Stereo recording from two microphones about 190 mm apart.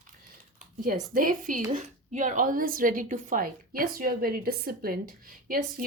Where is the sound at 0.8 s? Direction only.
50° right (ahead or behind).